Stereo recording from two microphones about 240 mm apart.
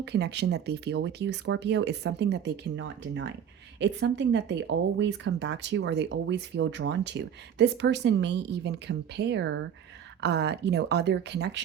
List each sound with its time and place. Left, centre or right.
0.0 s speech: right